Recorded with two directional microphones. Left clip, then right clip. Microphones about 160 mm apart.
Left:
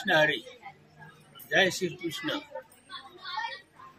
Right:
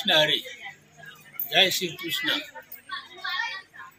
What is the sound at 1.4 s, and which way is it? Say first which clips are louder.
Speech: right 4 dB; 5° left (ahead or behind).